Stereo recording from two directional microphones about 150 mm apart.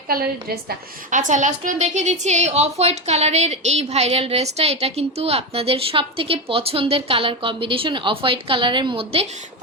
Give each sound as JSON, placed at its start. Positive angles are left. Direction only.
{"t": 0.1, "sound": "a woman's voice", "side_deg": -90}
{"t": 1.3, "sound": "a woman's voice", "side_deg": -55}